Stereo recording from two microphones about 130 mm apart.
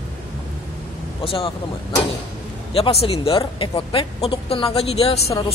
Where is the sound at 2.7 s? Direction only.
50° left (ahead or behind).